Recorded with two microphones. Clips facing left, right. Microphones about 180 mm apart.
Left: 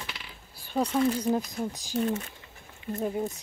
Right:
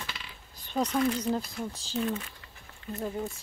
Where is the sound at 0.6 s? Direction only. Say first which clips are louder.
Left 2 dB; 10° left (ahead or behind).